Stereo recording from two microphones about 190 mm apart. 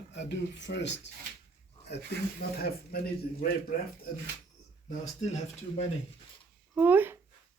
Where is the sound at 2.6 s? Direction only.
55° left (ahead or behind).